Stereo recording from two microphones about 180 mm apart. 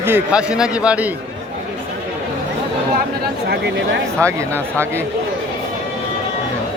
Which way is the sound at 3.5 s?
75° right (ahead or behind).